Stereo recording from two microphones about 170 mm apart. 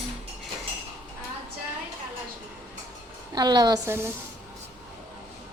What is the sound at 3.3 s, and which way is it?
Speech, 25° right (ahead or behind).